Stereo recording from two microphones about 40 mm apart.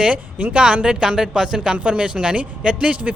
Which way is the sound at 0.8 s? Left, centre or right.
Centre.